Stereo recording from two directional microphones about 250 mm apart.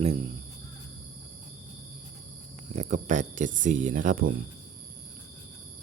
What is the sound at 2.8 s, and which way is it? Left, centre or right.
Speech, right.